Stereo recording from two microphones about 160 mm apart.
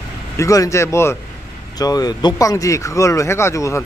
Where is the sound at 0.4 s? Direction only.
20° left (ahead or behind).